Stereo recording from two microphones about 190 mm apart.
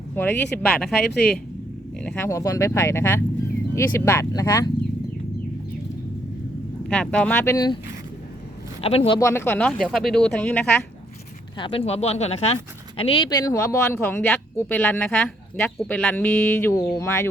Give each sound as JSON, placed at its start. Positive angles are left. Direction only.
{"t": 0.2, "sound": "speech", "side_deg": 10}
{"t": 1.1, "sound": "speech", "side_deg": 60}
{"t": 2.0, "sound": "speech", "side_deg": 10}
{"t": 6.8, "sound": "speech", "side_deg": 5}
{"t": 8.8, "sound": "speech", "side_deg": 30}
{"t": 11.5, "sound": "speech", "side_deg": 25}